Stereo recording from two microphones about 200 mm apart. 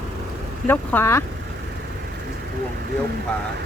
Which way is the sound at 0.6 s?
10° left (ahead or behind).